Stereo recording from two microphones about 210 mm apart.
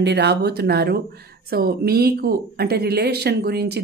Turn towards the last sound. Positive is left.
turn(degrees=-50)  # may be behind; listen again after turning